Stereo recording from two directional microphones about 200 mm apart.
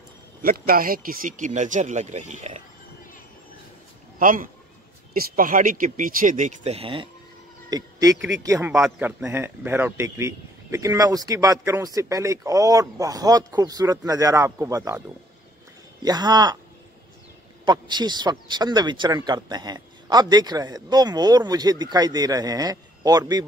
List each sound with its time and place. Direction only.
0.4 s speech: 45° right (ahead or behind)
4.2 s speech: 45° right (ahead or behind); by 7.1 s 25° right (ahead or behind)
8.4 s a man's voice: 15° right (ahead or behind)
8.7 s a man's voice: 5° right (ahead or behind); by 16.5 s 20° right (ahead or behind)
17.6 s speech: 20° right (ahead or behind)